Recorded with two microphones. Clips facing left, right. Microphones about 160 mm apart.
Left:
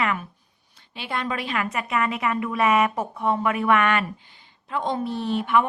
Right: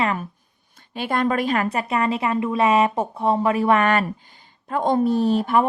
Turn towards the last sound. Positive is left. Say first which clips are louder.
# right 4 dB
turn(degrees=-40)  # may be behind; listen again after turning